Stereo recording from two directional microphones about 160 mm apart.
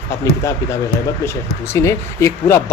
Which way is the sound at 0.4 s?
20° left (ahead or behind).